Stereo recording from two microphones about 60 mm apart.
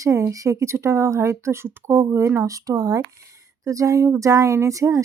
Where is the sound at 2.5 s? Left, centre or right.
Right.